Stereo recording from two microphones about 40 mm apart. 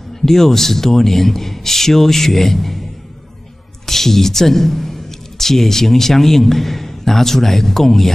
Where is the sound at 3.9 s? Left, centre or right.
Centre.